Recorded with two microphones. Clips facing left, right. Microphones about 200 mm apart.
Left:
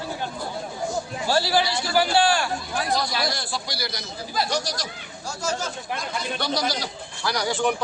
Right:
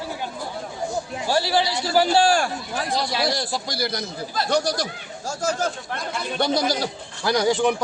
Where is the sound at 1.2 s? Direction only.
20° right (ahead or behind).